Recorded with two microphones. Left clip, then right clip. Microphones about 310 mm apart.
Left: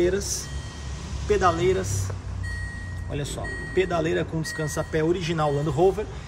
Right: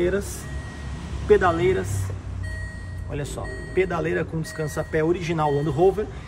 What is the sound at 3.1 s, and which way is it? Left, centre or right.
A man's voice, centre.